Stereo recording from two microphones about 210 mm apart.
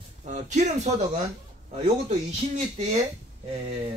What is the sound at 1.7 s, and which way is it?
Speech, 30° right (ahead or behind).